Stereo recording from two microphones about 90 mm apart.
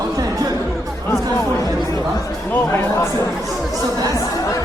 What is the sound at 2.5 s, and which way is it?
Music, 25° left (ahead or behind).